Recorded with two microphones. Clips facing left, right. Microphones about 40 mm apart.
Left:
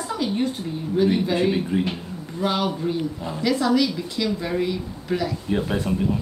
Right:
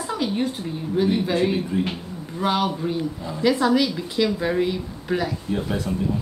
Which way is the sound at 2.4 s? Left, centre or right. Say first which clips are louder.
Right 1 dB; centre.